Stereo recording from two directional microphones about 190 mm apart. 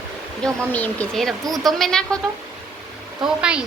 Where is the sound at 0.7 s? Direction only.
10° left (ahead or behind).